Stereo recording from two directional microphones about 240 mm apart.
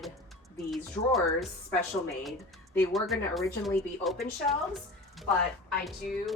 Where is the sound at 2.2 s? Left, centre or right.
Centre.